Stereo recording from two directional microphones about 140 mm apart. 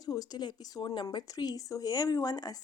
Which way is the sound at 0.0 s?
25° left (ahead or behind).